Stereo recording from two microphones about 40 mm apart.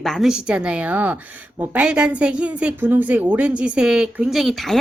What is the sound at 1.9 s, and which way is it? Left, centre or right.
Speech, right.